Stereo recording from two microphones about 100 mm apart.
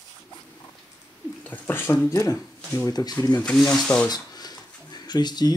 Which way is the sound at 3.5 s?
5° left (ahead or behind).